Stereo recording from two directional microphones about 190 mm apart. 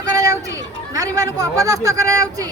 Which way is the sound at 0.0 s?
20° right (ahead or behind).